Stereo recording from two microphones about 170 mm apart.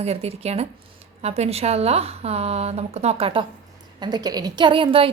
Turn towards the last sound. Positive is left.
turn(degrees=-30)  # may be behind; listen again after turning